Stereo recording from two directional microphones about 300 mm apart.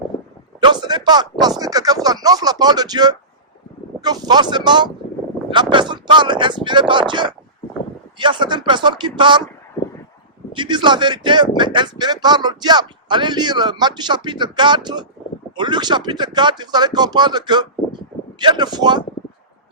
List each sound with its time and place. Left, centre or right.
0.6 s speech: centre
10.5 s speech: centre